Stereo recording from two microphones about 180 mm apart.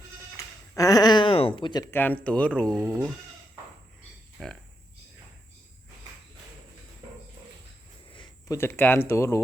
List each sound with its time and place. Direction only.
0.8 s a sound: 20° left (ahead or behind)
1.9 s speech: 10° left (ahead or behind)
2.7 s speech: 15° right (ahead or behind)
4.4 s speech: 5° left (ahead or behind)
8.1 s a sound: 25° left (ahead or behind)
8.5 s speech: 10° left (ahead or behind)